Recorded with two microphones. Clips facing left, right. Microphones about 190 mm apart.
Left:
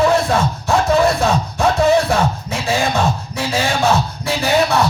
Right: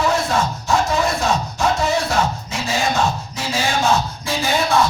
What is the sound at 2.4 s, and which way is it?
Beatboxing, 60° left (ahead or behind).